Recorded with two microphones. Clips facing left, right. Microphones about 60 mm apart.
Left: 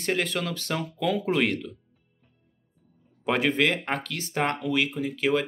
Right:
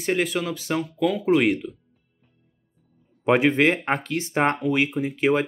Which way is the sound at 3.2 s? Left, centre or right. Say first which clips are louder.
Right 5 dB; right.